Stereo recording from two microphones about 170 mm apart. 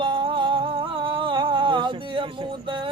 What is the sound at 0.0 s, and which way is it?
Music, 30° right (ahead or behind).